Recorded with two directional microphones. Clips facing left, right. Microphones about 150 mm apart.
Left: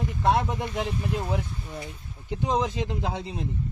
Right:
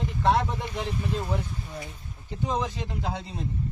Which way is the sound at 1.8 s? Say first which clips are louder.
Left 1 dB; 15° left (ahead or behind).